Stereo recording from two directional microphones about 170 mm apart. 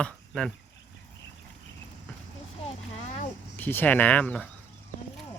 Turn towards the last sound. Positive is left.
turn(degrees=10)  # may be behind; listen again after turning